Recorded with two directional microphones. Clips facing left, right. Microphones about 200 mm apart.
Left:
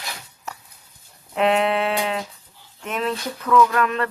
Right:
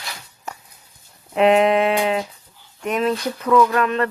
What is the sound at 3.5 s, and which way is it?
Speech, 20° right (ahead or behind).